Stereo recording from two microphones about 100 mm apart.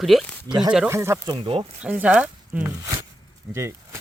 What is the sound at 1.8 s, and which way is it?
Speech, 15° right (ahead or behind).